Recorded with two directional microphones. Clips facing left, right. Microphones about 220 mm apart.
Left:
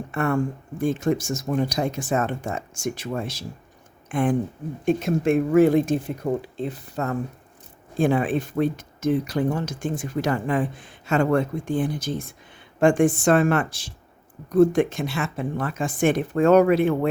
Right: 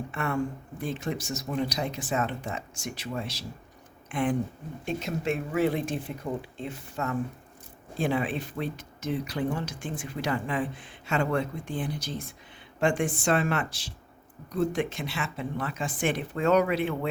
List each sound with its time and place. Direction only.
0.1 s speech: 50° left (ahead or behind)
7.9 s speech: 50° left (ahead or behind)